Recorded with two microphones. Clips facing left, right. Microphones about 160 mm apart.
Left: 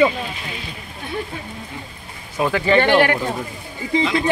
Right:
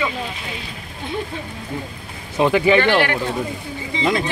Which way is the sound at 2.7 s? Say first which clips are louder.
Left 1 dB; 45° left (ahead or behind).